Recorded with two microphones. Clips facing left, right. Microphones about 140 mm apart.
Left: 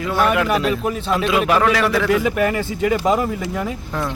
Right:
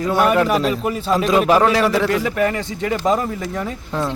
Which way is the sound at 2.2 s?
10° left (ahead or behind).